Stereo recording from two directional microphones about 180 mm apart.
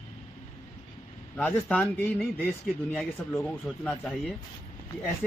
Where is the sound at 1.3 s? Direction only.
10° left (ahead or behind).